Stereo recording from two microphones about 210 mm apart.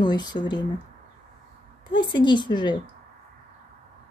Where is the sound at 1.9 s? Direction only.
20° left (ahead or behind).